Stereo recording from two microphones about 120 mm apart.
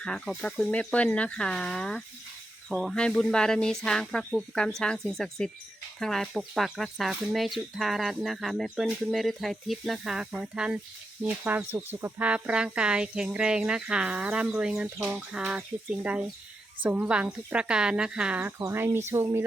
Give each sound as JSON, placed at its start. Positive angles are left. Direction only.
{"t": 0.0, "sound": "speech", "side_deg": 5}
{"t": 18.6, "sound": "speech", "side_deg": -25}